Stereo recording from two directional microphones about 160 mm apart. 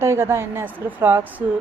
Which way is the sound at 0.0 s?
15° right (ahead or behind).